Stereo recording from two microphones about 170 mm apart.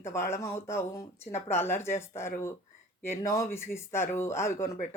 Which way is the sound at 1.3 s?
40° left (ahead or behind).